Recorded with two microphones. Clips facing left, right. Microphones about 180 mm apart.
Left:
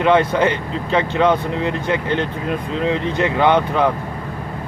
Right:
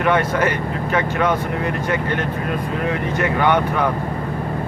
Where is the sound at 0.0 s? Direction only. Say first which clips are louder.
Left 3 dB; 20° left (ahead or behind).